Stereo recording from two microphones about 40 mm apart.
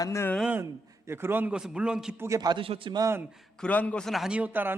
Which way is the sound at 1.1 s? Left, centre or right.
Right.